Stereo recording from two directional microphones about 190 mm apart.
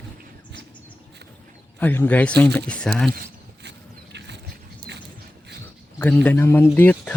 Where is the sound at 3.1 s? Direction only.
50° right (ahead or behind).